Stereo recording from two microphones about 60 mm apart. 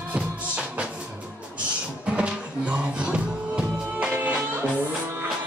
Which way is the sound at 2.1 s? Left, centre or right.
Centre.